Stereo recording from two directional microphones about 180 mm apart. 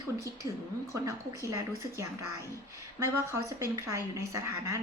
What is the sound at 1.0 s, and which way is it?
A woman's voice, 15° right (ahead or behind).